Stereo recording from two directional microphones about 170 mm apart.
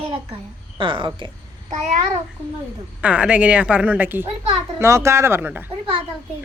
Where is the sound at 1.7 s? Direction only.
40° right (ahead or behind).